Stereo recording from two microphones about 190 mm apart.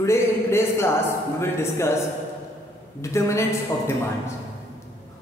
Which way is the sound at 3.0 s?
15° left (ahead or behind).